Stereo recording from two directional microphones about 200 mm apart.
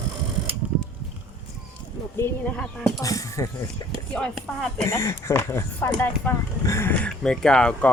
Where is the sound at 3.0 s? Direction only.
15° left (ahead or behind).